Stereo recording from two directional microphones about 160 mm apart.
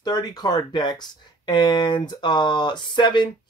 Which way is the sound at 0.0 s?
25° left (ahead or behind).